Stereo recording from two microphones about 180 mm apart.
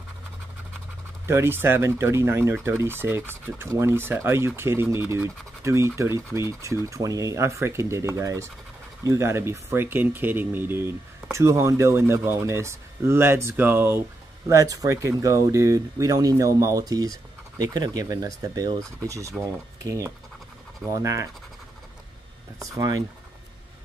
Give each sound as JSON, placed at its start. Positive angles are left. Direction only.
{"t": 1.2, "sound": "speech", "side_deg": -15}
{"t": 22.6, "sound": "speech", "side_deg": -20}